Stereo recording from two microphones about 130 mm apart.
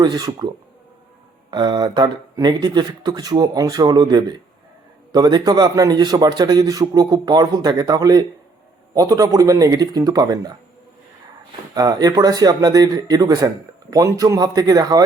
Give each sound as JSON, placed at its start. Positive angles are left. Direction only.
{"t": 0.0, "sound": "a man's voice", "side_deg": -35}
{"t": 11.7, "sound": "speech", "side_deg": -30}